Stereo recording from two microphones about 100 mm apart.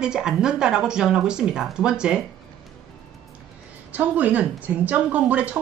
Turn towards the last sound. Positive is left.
turn(degrees=-15)  # may be behind; listen again after turning